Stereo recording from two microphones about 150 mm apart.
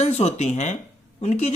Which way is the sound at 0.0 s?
45° left (ahead or behind).